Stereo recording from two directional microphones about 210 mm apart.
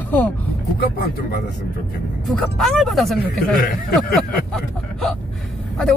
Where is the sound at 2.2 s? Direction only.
Centre (ahead or behind).